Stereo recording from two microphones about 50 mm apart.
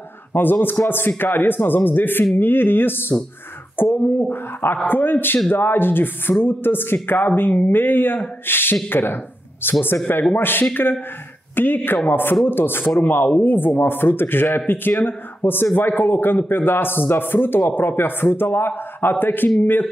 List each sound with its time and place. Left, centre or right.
0.3 s a man's voice: left